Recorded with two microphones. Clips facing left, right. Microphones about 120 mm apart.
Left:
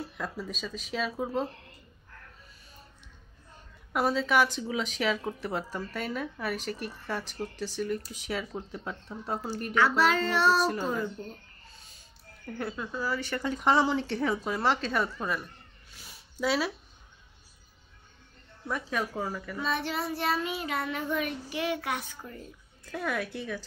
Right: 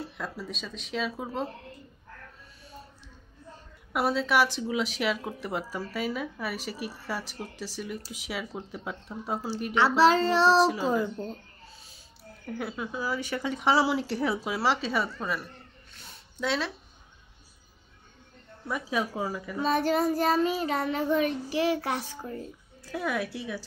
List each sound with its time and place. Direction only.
0.0 s speech: centre (ahead or behind)
3.9 s a woman's voice: 5° right (ahead or behind)
9.8 s child singing: 30° right (ahead or behind)
10.6 s speech: centre (ahead or behind)
12.4 s a woman's voice: 10° right (ahead or behind)
18.7 s a woman's voice: 10° right (ahead or behind)
19.6 s child singing: 40° right (ahead or behind)
22.8 s a woman's voice: 5° right (ahead or behind)